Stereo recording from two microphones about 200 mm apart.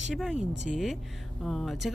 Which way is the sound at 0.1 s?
5° right (ahead or behind).